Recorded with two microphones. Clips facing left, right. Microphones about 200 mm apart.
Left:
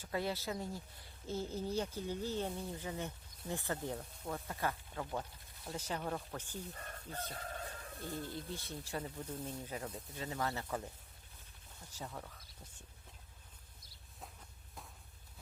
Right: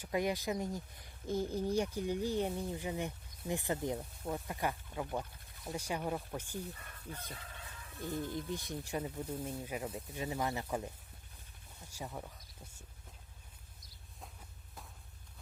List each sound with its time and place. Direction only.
0.0 s speech: 15° right (ahead or behind)
6.7 s chicken: 50° left (ahead or behind)
8.0 s speech: 15° right (ahead or behind)
11.9 s speech: 10° right (ahead or behind)